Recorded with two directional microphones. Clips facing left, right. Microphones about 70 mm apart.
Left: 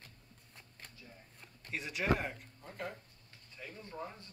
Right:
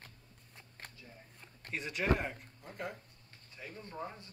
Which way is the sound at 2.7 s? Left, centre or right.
Centre.